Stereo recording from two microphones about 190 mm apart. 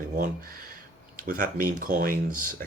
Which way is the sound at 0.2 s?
50° right (ahead or behind).